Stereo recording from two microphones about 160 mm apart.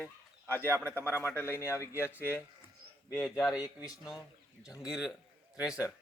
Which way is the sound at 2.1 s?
10° right (ahead or behind).